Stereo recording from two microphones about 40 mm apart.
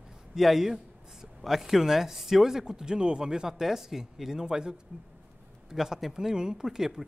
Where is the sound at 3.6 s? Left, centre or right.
Centre.